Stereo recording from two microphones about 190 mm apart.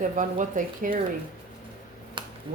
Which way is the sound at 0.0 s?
45° right (ahead or behind).